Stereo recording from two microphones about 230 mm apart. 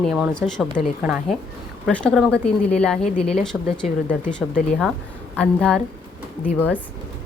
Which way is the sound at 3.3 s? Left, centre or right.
Left.